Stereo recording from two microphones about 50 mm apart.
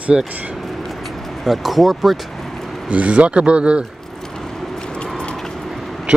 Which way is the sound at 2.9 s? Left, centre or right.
Right.